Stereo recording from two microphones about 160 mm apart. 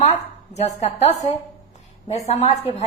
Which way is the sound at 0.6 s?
40° left (ahead or behind).